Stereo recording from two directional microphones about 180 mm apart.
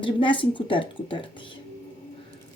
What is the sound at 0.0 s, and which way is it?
A woman's voice, 25° left (ahead or behind).